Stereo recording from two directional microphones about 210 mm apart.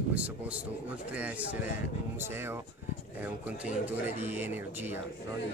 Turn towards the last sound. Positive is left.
turn(degrees=-10)  # may be behind; listen again after turning